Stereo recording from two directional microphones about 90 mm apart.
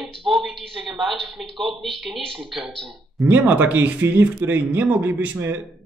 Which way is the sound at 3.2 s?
20° right (ahead or behind).